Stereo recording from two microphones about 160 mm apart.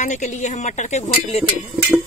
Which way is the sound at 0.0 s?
50° left (ahead or behind).